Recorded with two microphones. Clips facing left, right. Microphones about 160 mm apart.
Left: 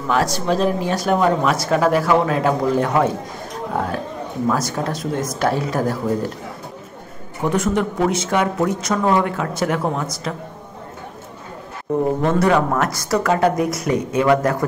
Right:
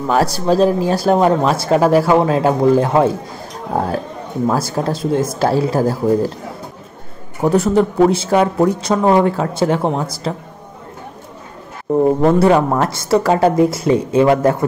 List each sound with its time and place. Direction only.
0.0 s speech: 35° right (ahead or behind)
7.4 s speech: 35° right (ahead or behind)
12.2 s speech: 30° right (ahead or behind)